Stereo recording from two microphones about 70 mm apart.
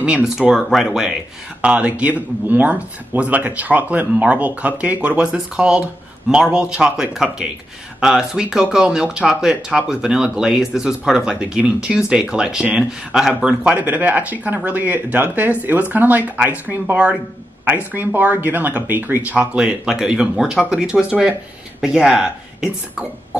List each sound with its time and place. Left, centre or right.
0.0 s speech: centre
1.6 s speech: centre
13.7 s speech: right
19.3 s speech: centre